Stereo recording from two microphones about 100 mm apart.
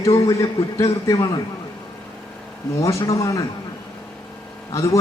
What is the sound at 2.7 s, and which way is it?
Speech, 35° left (ahead or behind).